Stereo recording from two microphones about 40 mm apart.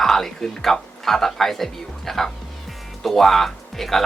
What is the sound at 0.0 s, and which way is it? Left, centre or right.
Speech, centre.